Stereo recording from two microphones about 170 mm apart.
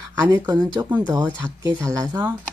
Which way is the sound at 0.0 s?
20° right (ahead or behind).